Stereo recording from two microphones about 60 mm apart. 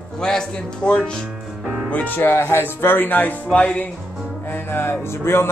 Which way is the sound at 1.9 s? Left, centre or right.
Left.